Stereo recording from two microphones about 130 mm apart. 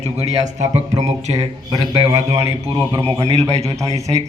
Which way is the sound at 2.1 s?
50° right (ahead or behind).